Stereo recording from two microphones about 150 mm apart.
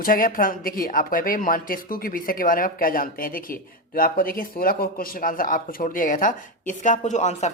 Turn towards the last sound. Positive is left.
turn(degrees=50)  # may be behind; listen again after turning